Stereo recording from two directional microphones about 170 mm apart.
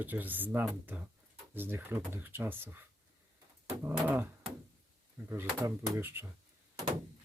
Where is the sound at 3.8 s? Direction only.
10° right (ahead or behind).